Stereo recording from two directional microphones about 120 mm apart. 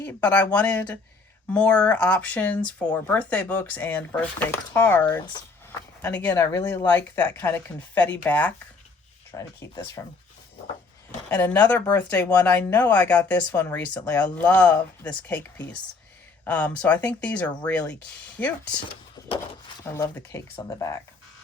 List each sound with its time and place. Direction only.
0.0 s speech: 10° left (ahead or behind)
6.3 s speech: 25° left (ahead or behind)
6.7 s speech: 15° left (ahead or behind)
9.6 s speech: 25° left (ahead or behind)
11.3 s speech: 15° left (ahead or behind)
19.8 s speech: 20° left (ahead or behind)